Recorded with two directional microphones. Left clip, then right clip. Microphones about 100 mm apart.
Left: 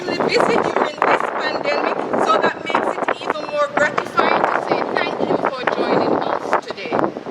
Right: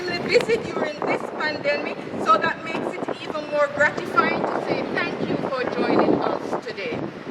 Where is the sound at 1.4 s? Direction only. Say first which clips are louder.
Left 4 dB; 20° left (ahead or behind).